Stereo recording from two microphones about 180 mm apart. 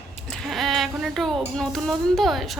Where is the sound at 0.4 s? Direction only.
Centre (ahead or behind).